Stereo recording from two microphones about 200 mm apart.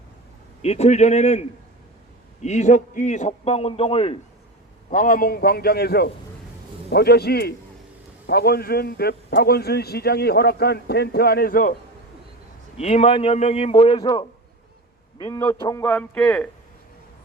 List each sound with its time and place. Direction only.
0.6 s a man's voice: 30° left (ahead or behind)
4.9 s speech: 40° left (ahead or behind)
12.7 s a man's voice: 30° left (ahead or behind); by 16.5 s 5° left (ahead or behind)